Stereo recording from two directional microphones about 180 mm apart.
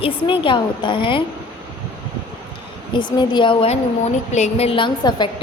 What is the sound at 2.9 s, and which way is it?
Speech, 25° left (ahead or behind).